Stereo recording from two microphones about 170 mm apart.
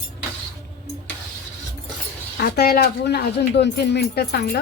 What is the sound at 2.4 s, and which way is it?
Speech, 70° left (ahead or behind).